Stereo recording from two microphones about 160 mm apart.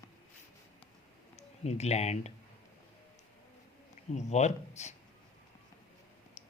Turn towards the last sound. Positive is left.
turn(degrees=45)  # may be behind; listen again after turning